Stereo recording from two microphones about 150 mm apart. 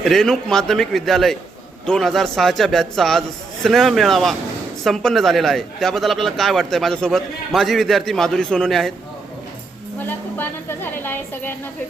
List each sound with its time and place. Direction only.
0.0 s speech: centre (ahead or behind)
10.0 s a woman's voice: 10° left (ahead or behind)